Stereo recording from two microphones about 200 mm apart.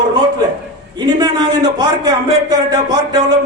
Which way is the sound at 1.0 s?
20° right (ahead or behind).